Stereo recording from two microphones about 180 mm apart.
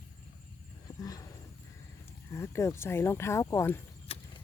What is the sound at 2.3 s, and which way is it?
Speech, 15° left (ahead or behind).